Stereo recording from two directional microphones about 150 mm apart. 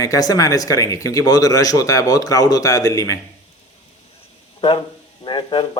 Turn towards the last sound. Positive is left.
turn(degrees=35)  # may be behind; listen again after turning